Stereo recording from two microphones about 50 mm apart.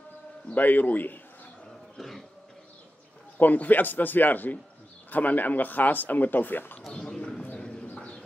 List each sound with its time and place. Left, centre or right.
0.5 s speech: left
2.0 s cough: centre
3.3 s speech: left
6.9 s bird: centre